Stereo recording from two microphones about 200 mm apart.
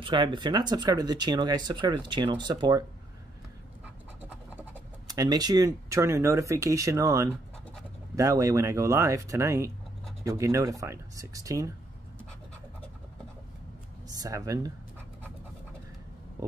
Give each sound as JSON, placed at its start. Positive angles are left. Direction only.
{"t": 0.0, "sound": "speech", "side_deg": -25}
{"t": 5.0, "sound": "speech", "side_deg": -20}
{"t": 14.0, "sound": "speech", "side_deg": -20}